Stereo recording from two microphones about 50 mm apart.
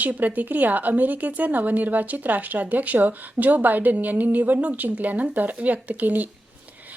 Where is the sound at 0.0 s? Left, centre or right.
Right.